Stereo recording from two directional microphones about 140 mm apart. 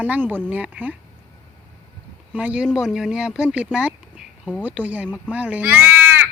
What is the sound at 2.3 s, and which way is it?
A woman's voice, 10° right (ahead or behind).